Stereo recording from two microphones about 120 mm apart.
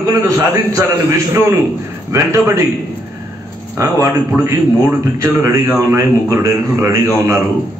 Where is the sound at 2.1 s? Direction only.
25° right (ahead or behind).